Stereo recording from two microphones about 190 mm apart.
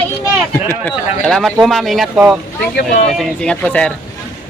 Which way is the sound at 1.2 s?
Centre (ahead or behind).